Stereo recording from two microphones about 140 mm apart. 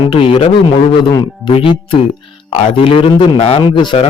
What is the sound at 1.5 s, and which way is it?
A man's voice, 40° left (ahead or behind).